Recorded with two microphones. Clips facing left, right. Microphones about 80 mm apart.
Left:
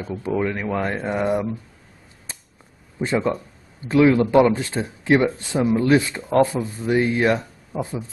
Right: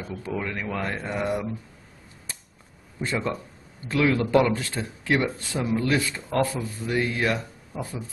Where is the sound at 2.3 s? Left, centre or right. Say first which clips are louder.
Left 2 dB; left.